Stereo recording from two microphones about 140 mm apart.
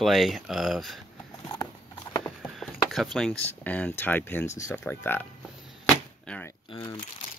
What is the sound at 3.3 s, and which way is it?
Speech, 10° left (ahead or behind).